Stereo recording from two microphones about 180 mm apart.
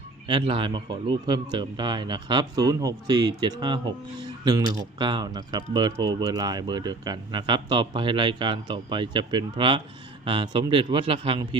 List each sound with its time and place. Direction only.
0.3 s speech: 25° right (ahead or behind)